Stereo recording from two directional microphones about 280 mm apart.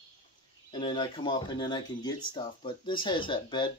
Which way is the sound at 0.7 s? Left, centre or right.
Centre.